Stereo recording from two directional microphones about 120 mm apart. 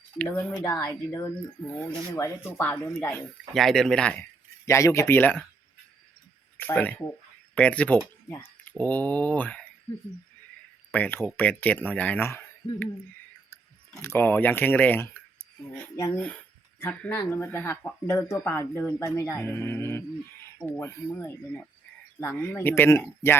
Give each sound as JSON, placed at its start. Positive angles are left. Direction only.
{"t": 0.2, "sound": "speech", "side_deg": 10}
{"t": 0.6, "sound": "speech", "side_deg": 30}
{"t": 3.5, "sound": "speech", "side_deg": 5}
{"t": 4.6, "sound": "speech", "side_deg": 25}
{"t": 6.6, "sound": "speech", "side_deg": 15}
{"t": 10.9, "sound": "speech", "side_deg": 15}
{"t": 14.0, "sound": "speech", "side_deg": 20}
{"t": 18.9, "sound": "speech", "side_deg": 25}